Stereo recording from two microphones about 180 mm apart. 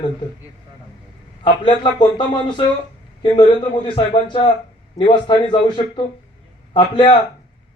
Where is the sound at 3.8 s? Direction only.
25° left (ahead or behind).